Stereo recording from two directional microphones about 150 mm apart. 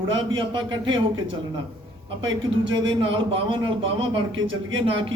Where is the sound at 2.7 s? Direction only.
35° right (ahead or behind).